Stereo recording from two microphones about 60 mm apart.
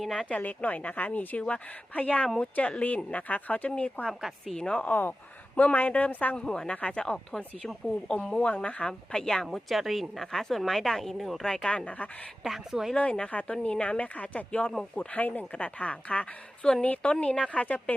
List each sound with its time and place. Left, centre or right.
0.0 s a woman's voice: centre
0.3 s speech: left
6.3 s speech: centre
8.9 s a woman's voice: centre
11.5 s speech: centre
12.4 s a woman's voice: centre
13.0 s speech: centre